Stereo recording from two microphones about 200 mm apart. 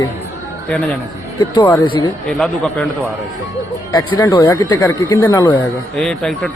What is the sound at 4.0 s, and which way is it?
Speech, 25° left (ahead or behind).